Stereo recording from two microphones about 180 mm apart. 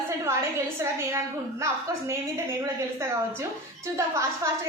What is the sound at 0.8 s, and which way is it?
A woman's voice, 15° right (ahead or behind).